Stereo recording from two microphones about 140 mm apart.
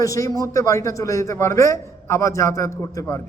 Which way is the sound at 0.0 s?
25° left (ahead or behind).